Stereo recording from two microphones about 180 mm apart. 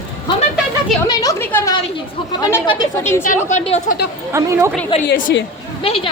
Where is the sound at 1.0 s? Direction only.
20° left (ahead or behind).